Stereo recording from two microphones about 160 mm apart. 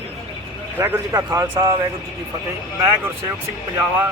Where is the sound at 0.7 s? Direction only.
10° right (ahead or behind).